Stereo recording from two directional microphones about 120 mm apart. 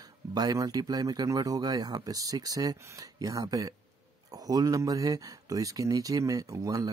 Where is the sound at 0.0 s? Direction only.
30° right (ahead or behind).